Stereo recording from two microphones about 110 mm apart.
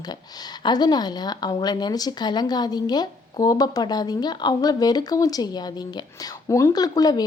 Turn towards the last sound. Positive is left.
turn(degrees=35)  # may be behind; listen again after turning